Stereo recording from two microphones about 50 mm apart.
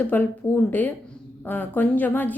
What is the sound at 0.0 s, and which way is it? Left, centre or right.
A woman's voice, left.